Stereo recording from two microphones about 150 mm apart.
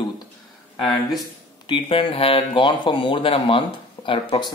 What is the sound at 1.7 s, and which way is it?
Speech, 35° left (ahead or behind).